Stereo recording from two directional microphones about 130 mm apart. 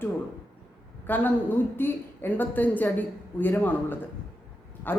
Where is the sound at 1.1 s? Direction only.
15° left (ahead or behind).